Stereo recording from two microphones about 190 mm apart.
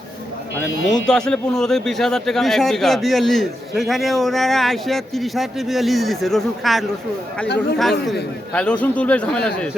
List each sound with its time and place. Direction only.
0.9 s speech: 5° left (ahead or behind)
7.4 s speech: 60° left (ahead or behind)
7.8 s a man's voice: centre (ahead or behind)